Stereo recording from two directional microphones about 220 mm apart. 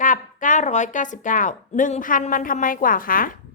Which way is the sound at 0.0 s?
35° left (ahead or behind).